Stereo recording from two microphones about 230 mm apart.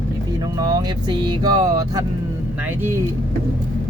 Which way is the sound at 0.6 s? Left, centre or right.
Centre.